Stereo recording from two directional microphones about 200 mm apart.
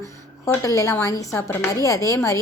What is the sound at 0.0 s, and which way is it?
A woman's voice, 15° left (ahead or behind).